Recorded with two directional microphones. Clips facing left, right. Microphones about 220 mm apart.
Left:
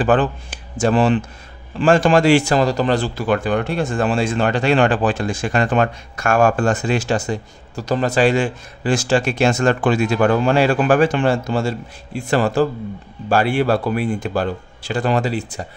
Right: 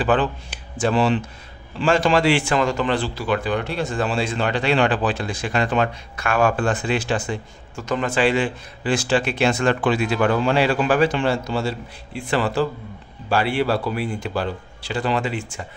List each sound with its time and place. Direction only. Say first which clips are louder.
0.0 s speech: left 3 dB; 45° left (ahead or behind)